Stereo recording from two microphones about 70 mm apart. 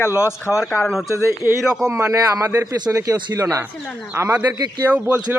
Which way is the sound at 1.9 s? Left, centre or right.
Centre.